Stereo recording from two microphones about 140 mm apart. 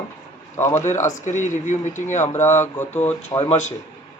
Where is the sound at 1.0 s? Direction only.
60° left (ahead or behind).